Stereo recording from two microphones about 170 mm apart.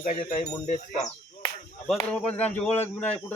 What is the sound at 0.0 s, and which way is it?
Speech, 45° left (ahead or behind).